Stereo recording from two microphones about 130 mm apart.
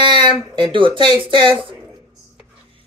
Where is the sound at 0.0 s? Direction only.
35° right (ahead or behind).